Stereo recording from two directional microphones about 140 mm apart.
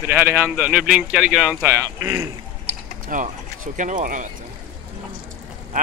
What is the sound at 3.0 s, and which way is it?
Speech, 70° right (ahead or behind).